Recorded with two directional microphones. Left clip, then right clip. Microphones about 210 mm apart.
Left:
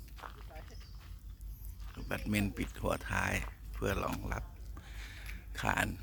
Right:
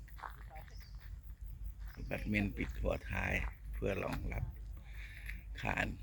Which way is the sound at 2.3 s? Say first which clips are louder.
Even; 25° left (ahead or behind).